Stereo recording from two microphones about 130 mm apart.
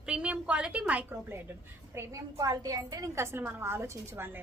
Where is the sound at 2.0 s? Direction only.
25° right (ahead or behind).